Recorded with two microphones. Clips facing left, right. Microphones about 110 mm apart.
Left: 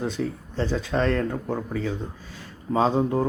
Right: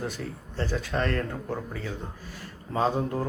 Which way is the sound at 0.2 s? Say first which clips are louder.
Left 8 dB; centre (ahead or behind).